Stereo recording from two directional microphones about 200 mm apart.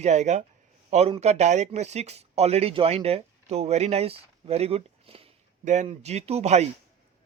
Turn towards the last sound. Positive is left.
turn(degrees=-35)  # may be behind; listen again after turning